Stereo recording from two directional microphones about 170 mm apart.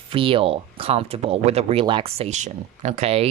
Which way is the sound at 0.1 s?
30° right (ahead or behind).